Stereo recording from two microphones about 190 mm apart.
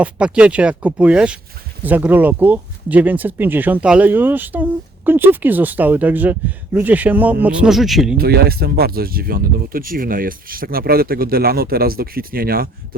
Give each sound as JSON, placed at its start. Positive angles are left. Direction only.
{"t": 0.0, "sound": "speech", "side_deg": -5}
{"t": 8.2, "sound": "speech", "side_deg": -55}